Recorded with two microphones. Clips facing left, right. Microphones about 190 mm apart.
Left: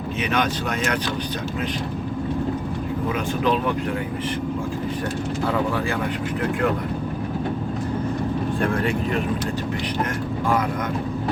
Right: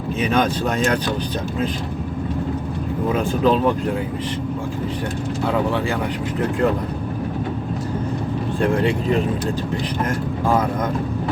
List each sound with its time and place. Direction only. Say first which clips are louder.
0.2 s speech: right 4 dB; 35° right (ahead or behind)
3.1 s speech: right 5 dB; 35° right (ahead or behind)